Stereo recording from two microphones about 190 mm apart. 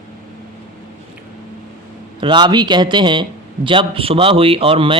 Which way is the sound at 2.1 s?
25° right (ahead or behind).